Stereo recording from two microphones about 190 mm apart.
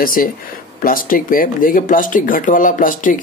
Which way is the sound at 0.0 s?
50° left (ahead or behind).